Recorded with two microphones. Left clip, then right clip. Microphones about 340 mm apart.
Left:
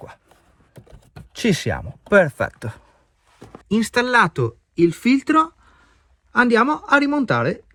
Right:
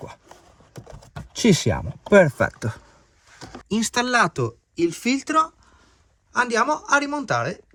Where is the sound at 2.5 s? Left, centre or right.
Left.